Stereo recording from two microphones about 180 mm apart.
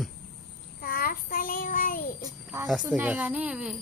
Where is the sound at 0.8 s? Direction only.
55° left (ahead or behind).